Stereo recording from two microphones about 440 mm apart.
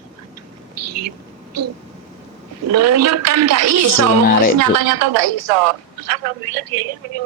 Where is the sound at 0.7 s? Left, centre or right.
Right.